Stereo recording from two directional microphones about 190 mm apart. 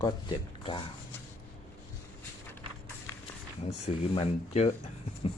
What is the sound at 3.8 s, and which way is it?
Speech, 35° left (ahead or behind).